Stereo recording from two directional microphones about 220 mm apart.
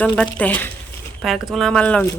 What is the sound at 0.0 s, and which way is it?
Speech, 5° left (ahead or behind).